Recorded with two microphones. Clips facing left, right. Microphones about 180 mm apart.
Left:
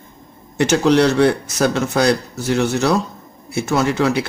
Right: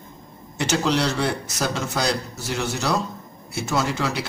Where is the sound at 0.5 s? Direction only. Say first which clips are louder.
Left 8 dB; 60° left (ahead or behind).